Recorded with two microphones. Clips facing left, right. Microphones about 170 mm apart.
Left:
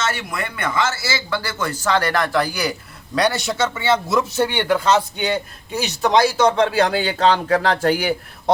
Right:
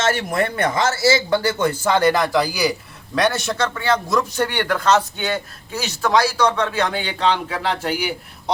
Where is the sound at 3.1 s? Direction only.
Centre (ahead or behind).